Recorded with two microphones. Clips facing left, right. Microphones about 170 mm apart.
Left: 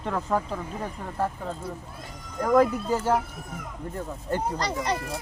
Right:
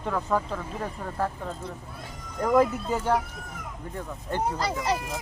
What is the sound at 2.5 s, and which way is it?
Speech, centre (ahead or behind).